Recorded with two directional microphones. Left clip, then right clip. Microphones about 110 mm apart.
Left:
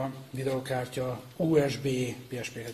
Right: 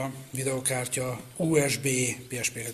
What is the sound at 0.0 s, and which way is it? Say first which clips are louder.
Speech: right 1 dB; 5° right (ahead or behind).